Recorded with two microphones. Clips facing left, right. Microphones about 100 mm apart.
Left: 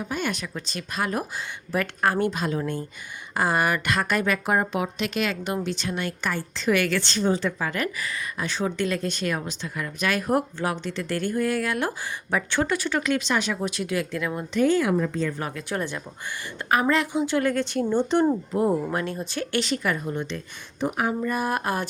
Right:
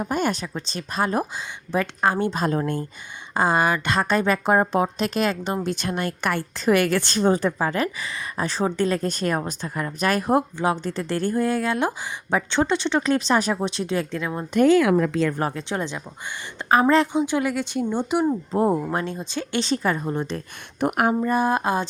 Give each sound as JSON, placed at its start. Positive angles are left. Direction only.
{"t": 0.0, "sound": "a woman's voice", "side_deg": -45}
{"t": 2.3, "sound": "a woman's voice", "side_deg": -40}
{"t": 3.3, "sound": "speech", "side_deg": -25}
{"t": 5.6, "sound": "a woman's voice", "side_deg": -50}
{"t": 7.7, "sound": "a woman's voice", "side_deg": -30}
{"t": 14.5, "sound": "speech", "side_deg": -75}
{"t": 15.4, "sound": "a woman's voice", "side_deg": -35}
{"t": 15.7, "sound": "speech", "side_deg": -20}
{"t": 18.5, "sound": "speech", "side_deg": -30}
{"t": 20.8, "sound": "speech", "side_deg": -60}
{"t": 21.1, "sound": "speech", "side_deg": -30}